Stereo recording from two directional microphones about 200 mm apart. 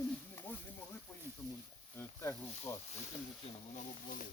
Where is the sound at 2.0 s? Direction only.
15° left (ahead or behind).